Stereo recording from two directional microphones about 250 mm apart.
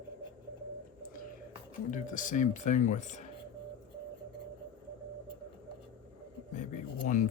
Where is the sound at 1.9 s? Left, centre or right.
Left.